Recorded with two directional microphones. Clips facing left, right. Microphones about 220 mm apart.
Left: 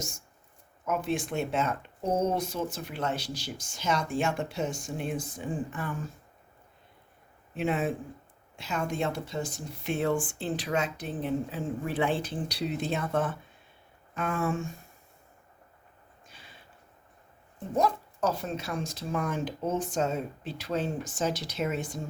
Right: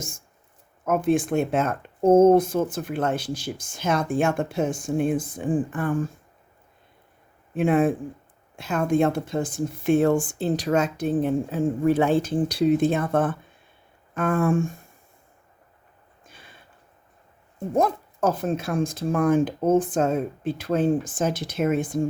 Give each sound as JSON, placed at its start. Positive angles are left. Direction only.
{"t": 0.9, "sound": "speech", "side_deg": -50}
{"t": 7.5, "sound": "speech", "side_deg": -50}
{"t": 16.2, "sound": "a sound", "side_deg": -50}
{"t": 17.7, "sound": "speech", "side_deg": -50}